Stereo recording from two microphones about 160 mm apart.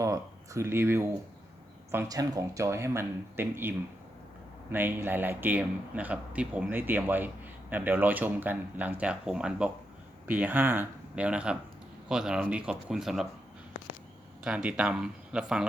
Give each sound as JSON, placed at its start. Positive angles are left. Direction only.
{"t": 0.0, "sound": "speech", "side_deg": -20}
{"t": 14.4, "sound": "speech", "side_deg": -5}